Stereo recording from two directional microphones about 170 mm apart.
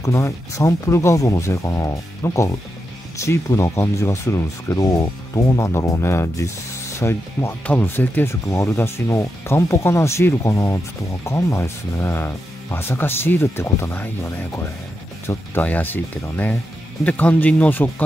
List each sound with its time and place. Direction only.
0.0 s speech: 20° left (ahead or behind)
15.2 s speech: 10° left (ahead or behind)